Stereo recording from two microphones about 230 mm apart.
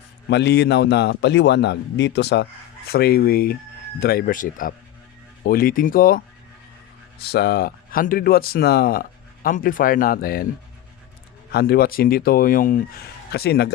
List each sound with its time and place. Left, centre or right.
0.3 s a man's voice: left
11.5 s a man's voice: left